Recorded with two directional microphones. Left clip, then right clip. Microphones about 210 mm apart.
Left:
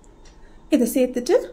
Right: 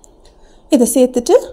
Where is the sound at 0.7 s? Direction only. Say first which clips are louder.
Right 8 dB; 30° right (ahead or behind).